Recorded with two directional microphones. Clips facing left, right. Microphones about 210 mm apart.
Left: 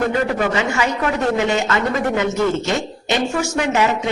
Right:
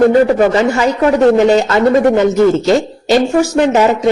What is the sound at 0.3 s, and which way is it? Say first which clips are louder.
Speech: right 9 dB; 40° right (ahead or behind).